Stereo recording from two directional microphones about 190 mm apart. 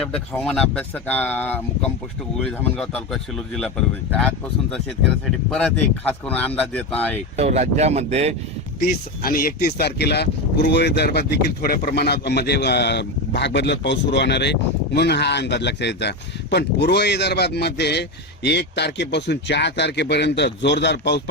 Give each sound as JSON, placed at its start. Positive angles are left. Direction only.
{"t": 0.1, "sound": "speech", "side_deg": 5}
{"t": 7.3, "sound": "speech", "side_deg": -35}
{"t": 8.8, "sound": "a man's voice", "side_deg": 50}